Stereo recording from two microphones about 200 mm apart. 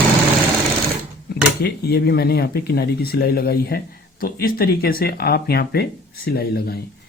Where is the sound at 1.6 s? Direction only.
55° left (ahead or behind).